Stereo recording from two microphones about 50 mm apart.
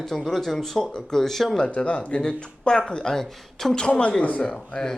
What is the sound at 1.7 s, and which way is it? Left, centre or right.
Speech, left.